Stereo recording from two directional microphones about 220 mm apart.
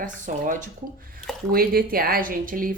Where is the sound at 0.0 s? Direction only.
35° right (ahead or behind).